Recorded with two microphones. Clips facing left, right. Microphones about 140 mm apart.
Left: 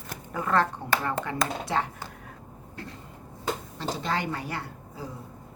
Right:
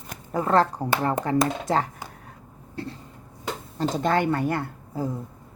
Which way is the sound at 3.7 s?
50° right (ahead or behind).